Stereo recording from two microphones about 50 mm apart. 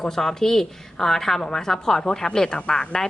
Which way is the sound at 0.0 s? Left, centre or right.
Centre.